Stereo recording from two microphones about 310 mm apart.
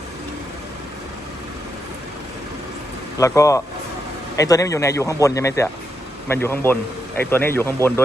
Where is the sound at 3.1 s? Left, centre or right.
Centre.